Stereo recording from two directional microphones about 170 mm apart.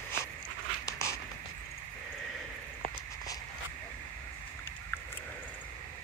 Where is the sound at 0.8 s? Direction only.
20° left (ahead or behind).